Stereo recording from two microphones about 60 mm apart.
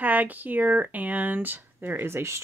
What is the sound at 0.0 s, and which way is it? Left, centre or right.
Speech, right.